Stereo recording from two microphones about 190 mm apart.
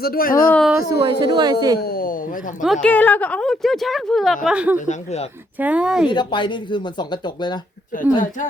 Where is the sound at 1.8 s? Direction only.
50° left (ahead or behind).